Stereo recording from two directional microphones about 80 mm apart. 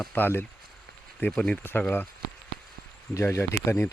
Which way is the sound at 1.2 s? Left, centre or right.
Centre.